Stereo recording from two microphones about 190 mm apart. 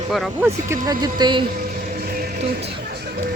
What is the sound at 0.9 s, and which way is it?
Speech, 20° right (ahead or behind).